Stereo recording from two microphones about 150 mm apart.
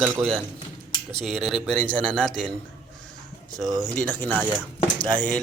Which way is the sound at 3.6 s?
25° right (ahead or behind).